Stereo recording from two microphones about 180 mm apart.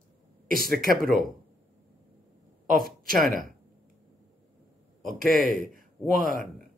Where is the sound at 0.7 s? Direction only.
50° right (ahead or behind).